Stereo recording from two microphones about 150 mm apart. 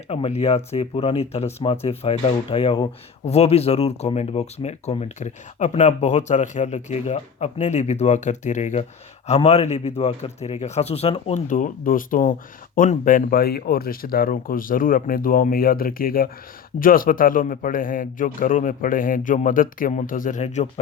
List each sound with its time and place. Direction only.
0.1 s a man's voice: 40° left (ahead or behind)